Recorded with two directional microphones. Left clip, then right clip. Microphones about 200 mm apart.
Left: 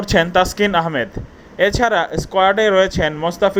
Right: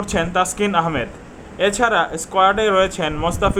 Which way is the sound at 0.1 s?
30° left (ahead or behind).